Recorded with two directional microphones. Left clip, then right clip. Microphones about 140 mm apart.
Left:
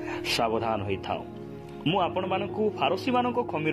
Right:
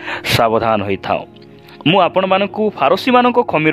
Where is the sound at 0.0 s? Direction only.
50° right (ahead or behind).